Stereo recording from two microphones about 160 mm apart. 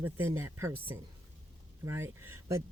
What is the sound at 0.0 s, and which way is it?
Speech, 15° right (ahead or behind).